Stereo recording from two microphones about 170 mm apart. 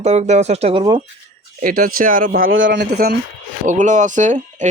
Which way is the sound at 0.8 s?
25° right (ahead or behind).